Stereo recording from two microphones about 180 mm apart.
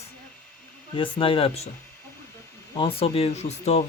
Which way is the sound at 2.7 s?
30° left (ahead or behind).